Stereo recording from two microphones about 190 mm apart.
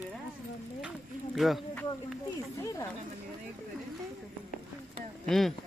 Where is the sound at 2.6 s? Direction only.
15° left (ahead or behind).